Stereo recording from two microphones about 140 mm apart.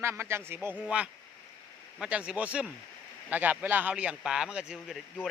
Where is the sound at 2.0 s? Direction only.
10° right (ahead or behind).